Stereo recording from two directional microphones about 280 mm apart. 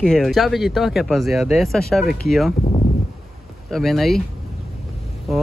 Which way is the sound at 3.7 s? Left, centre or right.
Centre.